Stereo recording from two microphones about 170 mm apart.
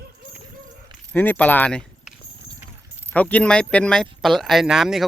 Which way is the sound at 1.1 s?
10° left (ahead or behind).